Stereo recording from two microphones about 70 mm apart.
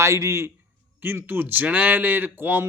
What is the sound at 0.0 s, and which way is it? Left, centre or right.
Speech, right.